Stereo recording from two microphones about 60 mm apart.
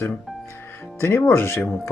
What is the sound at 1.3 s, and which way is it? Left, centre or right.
Speech, left.